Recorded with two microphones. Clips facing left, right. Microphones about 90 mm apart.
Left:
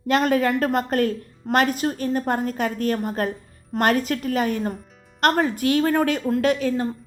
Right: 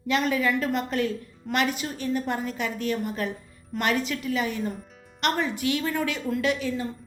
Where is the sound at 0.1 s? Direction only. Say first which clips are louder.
Left 5 dB; 45° left (ahead or behind).